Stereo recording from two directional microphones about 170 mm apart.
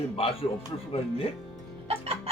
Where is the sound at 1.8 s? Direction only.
35° right (ahead or behind).